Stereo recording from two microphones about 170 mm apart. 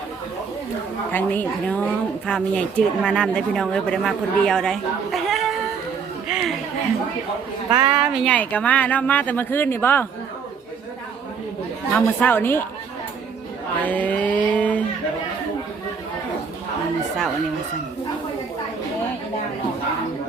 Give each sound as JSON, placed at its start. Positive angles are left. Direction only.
{"t": 1.1, "sound": "a woman's voice", "side_deg": 10}
{"t": 6.2, "sound": "a sound", "side_deg": -5}
{"t": 7.7, "sound": "a woman's voice", "side_deg": -25}
{"t": 8.2, "sound": "speech", "side_deg": 10}
{"t": 11.9, "sound": "speech", "side_deg": 10}
{"t": 13.8, "sound": "a sound", "side_deg": 10}